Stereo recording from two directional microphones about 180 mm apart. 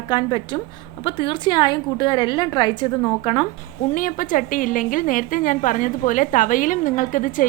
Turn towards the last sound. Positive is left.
turn(degrees=50)  # may be behind; listen again after turning